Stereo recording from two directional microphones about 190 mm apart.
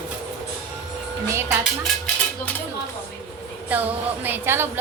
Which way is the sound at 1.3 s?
15° right (ahead or behind).